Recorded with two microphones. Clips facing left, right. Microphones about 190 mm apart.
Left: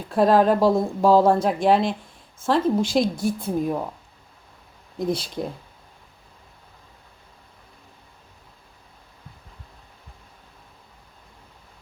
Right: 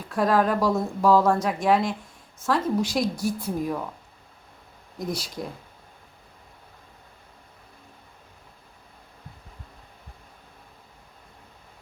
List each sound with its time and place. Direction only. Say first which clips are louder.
0.1 s speech: left 5 dB; 30° left (ahead or behind)
4.9 s speech: left 6 dB; 25° left (ahead or behind)